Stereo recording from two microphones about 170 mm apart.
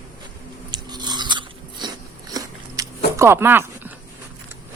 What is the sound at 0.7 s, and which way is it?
Biting, 25° right (ahead or behind).